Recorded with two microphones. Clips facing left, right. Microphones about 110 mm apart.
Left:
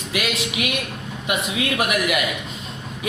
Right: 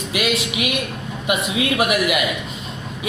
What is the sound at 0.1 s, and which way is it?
Speech, 15° right (ahead or behind).